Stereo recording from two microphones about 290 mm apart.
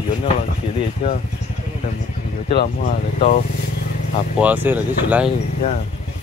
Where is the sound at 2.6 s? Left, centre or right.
Left.